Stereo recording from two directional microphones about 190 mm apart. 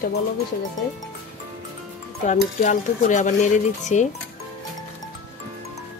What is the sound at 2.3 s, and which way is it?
Speech, 40° left (ahead or behind).